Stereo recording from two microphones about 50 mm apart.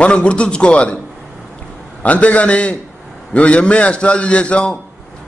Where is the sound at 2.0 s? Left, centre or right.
Left.